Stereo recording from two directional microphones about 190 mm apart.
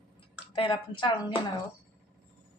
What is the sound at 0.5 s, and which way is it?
Speech, 25° left (ahead or behind).